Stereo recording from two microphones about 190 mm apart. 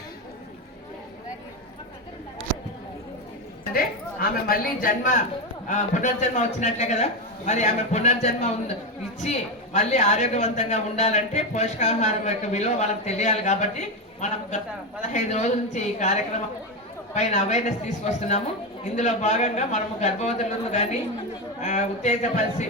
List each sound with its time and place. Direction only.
3.8 s a woman's voice: 50° left (ahead or behind)
17.2 s a woman's voice: 40° left (ahead or behind)